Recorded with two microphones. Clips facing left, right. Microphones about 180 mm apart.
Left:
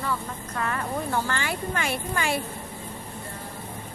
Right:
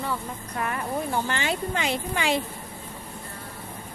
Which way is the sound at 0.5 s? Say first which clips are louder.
Even; 15° right (ahead or behind).